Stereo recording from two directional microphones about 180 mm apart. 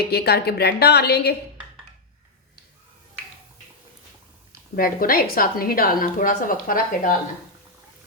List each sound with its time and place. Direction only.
0.0 s a woman's voice: 60° left (ahead or behind)
4.7 s a woman's voice: 55° left (ahead or behind)